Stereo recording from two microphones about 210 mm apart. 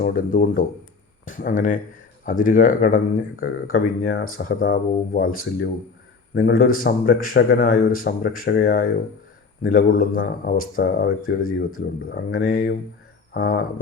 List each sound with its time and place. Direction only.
0.0 s speech: 40° left (ahead or behind)
6.3 s speech: 45° left (ahead or behind)
11.3 s speech: 80° left
12.0 s speech: 45° left (ahead or behind)